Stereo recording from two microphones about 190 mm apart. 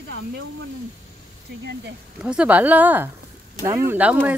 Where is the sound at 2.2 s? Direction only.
5° right (ahead or behind).